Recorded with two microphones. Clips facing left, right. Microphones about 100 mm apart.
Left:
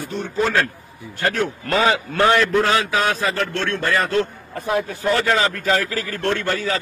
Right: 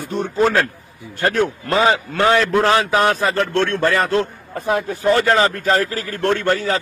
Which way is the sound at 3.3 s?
55° right (ahead or behind).